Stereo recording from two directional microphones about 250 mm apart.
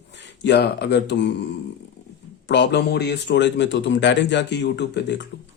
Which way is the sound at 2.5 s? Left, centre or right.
Left.